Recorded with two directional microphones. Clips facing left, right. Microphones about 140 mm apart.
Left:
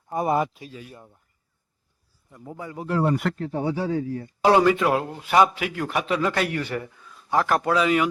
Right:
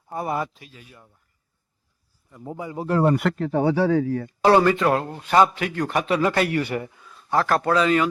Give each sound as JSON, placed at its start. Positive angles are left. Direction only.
{"t": 0.1, "sound": "speech", "side_deg": 20}
{"t": 2.4, "sound": "a man's voice", "side_deg": -20}
{"t": 2.7, "sound": "speech", "side_deg": -40}
{"t": 3.2, "sound": "speech", "side_deg": -90}
{"t": 4.4, "sound": "a man's voice", "side_deg": 10}
{"t": 6.6, "sound": "a man's voice", "side_deg": -15}
{"t": 7.3, "sound": "speech", "side_deg": 15}